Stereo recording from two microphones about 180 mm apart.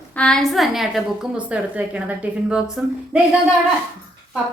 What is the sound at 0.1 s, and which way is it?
A woman's voice, 5° left (ahead or behind).